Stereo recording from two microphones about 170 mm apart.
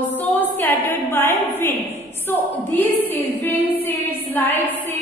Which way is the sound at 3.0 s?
10° left (ahead or behind).